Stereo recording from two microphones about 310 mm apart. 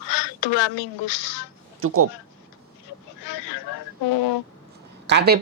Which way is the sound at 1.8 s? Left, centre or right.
Right.